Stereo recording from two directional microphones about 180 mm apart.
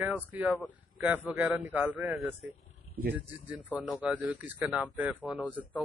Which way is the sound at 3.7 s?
5° right (ahead or behind).